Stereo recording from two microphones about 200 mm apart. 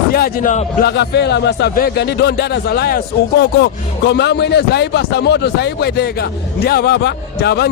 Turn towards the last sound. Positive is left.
turn(degrees=55)  # may be behind; listen again after turning